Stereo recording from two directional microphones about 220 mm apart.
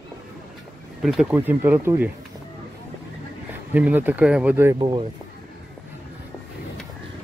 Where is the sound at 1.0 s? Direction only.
Centre (ahead or behind).